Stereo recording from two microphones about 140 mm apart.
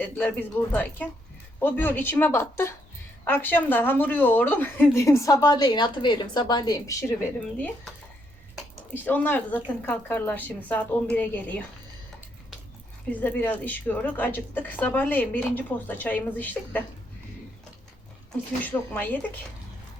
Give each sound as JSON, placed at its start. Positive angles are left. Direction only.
{"t": 0.0, "sound": "a woman's voice", "side_deg": 10}
{"t": 8.9, "sound": "a woman's voice", "side_deg": 10}
{"t": 13.1, "sound": "a woman's voice", "side_deg": 10}
{"t": 18.3, "sound": "a woman's voice", "side_deg": 15}